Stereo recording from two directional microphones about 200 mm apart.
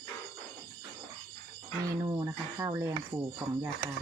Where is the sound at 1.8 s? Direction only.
20° right (ahead or behind).